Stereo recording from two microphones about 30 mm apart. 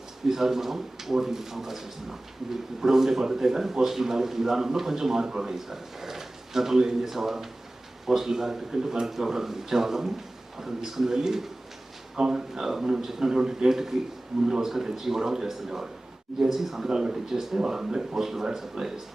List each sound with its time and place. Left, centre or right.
0.3 s speech: centre
12.1 s speech: right
12.5 s speech: centre
16.9 s speech: right
17.6 s speech: right